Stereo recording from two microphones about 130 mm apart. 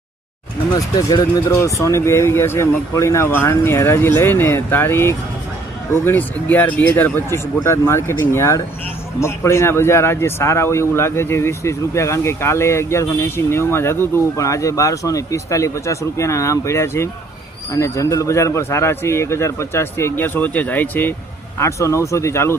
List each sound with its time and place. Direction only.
0.7 s a man's voice: 30° left (ahead or behind)